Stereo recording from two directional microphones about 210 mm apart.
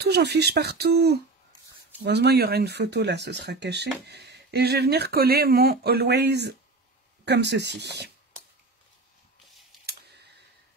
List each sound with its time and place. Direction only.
0.0 s speech: 50° right (ahead or behind)